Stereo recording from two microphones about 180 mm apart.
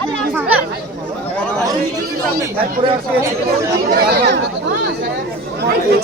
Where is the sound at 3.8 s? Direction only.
60° right (ahead or behind).